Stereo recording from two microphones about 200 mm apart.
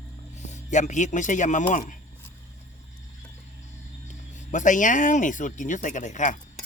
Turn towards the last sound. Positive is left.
turn(degrees=40)  # may be behind; listen again after turning